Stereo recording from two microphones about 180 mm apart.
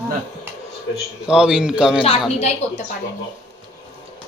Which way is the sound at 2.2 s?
35° left (ahead or behind).